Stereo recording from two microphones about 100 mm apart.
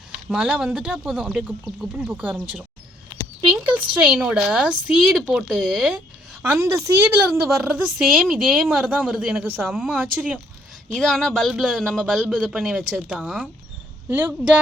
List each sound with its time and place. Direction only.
0.3 s speech: 10° right (ahead or behind)
3.5 s speech: 15° right (ahead or behind)
6.4 s a woman's voice: 25° right (ahead or behind)
7.6 s speech: 10° right (ahead or behind)
9.4 s a woman's voice: 20° right (ahead or behind)
10.9 s speech: 5° left (ahead or behind)
14.1 s a woman's voice: 20° right (ahead or behind)